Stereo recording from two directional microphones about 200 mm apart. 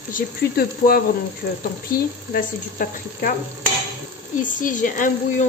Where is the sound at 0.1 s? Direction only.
45° left (ahead or behind).